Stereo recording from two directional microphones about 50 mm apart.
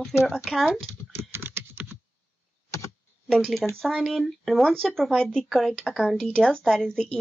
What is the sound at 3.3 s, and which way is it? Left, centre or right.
A woman's voice, centre.